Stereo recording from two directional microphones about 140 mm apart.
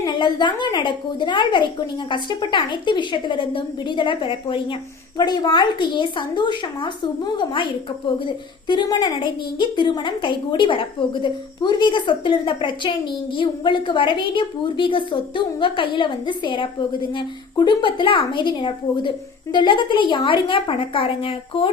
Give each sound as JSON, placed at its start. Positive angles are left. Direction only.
{"t": 0.0, "sound": "a woman's voice", "side_deg": 35}